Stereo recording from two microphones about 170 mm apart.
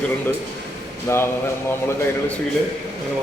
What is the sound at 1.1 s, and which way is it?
Speech, 15° left (ahead or behind).